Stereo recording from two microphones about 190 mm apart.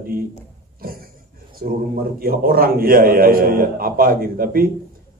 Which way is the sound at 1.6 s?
50° right (ahead or behind).